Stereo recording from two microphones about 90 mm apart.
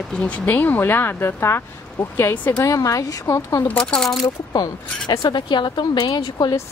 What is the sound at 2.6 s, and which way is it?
Speech, 40° left (ahead or behind).